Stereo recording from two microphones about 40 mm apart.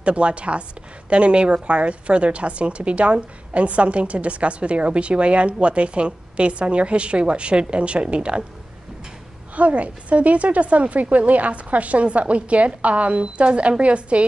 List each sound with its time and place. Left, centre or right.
0.0 s a woman's voice: right
9.6 s a woman's voice: right